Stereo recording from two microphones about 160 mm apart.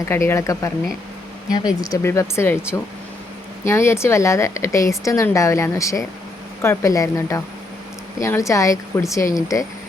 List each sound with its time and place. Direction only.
0.0 s speech: 15° left (ahead or behind)
3.7 s speech: 15° left (ahead or behind)